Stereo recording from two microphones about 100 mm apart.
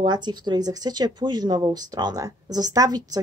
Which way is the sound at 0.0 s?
45° right (ahead or behind).